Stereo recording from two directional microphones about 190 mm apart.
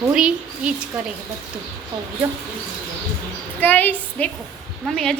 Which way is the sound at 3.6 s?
10° left (ahead or behind).